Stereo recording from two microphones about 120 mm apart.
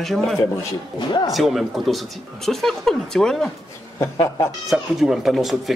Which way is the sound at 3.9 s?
35° left (ahead or behind).